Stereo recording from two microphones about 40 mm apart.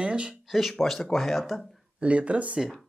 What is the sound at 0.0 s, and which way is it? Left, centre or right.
Speech, right.